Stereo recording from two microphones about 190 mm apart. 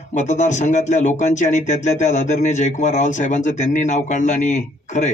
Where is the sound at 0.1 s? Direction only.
40° left (ahead or behind).